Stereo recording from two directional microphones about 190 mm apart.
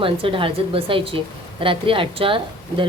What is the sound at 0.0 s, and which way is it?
A woman's voice, 30° right (ahead or behind).